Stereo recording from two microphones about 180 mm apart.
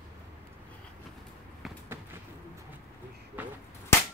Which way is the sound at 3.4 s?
10° right (ahead or behind).